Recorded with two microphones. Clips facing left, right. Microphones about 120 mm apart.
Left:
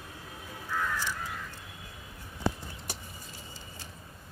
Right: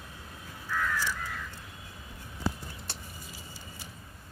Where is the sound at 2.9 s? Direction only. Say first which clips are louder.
Left 6 dB; 10° left (ahead or behind).